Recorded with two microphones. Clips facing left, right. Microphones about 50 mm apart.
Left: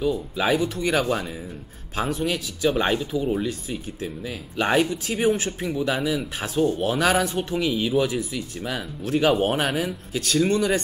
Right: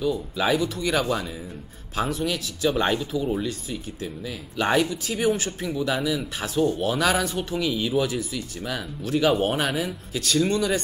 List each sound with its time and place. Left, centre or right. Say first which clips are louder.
0.4 s speech: left 1 dB; centre
2.0 s speech: left 1 dB; centre